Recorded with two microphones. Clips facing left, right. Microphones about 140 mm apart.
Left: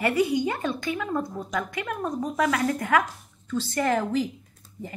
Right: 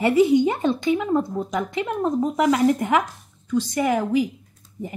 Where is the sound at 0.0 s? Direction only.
25° right (ahead or behind).